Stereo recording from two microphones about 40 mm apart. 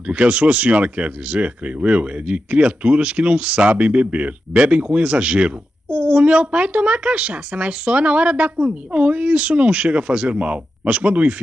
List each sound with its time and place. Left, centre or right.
0.0 s speech: right